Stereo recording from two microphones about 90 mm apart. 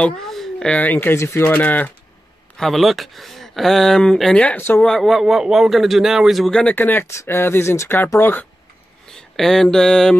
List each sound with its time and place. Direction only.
0.3 s a sound: 5° left (ahead or behind)
0.7 s speech: 20° left (ahead or behind)
2.5 s speech: 5° left (ahead or behind)
4.6 s speech: 25° left (ahead or behind)
4.8 s speech: 5° left (ahead or behind)
6.6 s speech: 20° left (ahead or behind)
9.1 s speech: 5° left (ahead or behind)